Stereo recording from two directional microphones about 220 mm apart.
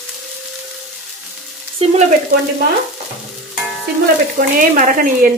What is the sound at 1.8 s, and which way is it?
Frying, 25° right (ahead or behind).